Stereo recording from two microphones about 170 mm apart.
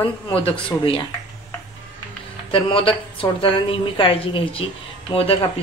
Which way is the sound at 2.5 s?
30° left (ahead or behind).